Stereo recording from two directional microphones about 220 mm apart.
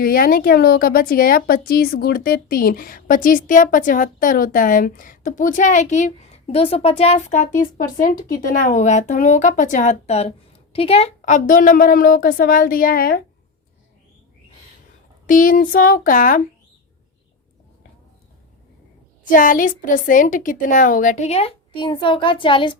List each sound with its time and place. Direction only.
0.0 s a woman's voice: 40° left (ahead or behind)
15.3 s a woman's voice: 40° left (ahead or behind)
19.2 s a woman's voice: 40° left (ahead or behind); by 22.8 s 20° left (ahead or behind)